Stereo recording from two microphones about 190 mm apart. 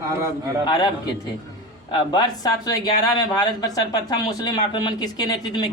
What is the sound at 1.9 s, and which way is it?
Speech, 20° left (ahead or behind).